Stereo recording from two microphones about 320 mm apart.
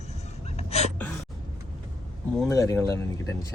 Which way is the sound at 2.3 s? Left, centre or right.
Centre.